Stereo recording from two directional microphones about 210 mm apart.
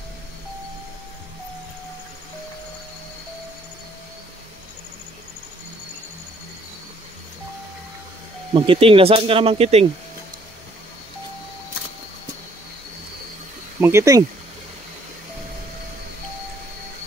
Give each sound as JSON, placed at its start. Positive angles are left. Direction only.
{"t": 8.5, "sound": "speech", "side_deg": -25}
{"t": 13.7, "sound": "speech", "side_deg": -10}